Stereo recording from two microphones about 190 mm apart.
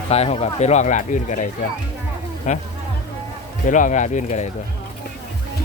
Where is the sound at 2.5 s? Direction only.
40° left (ahead or behind).